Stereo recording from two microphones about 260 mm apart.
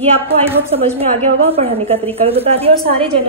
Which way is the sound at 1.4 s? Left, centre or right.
Right.